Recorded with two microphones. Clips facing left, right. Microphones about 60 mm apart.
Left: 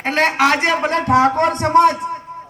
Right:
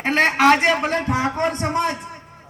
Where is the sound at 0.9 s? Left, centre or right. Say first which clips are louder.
Left 7 dB; left.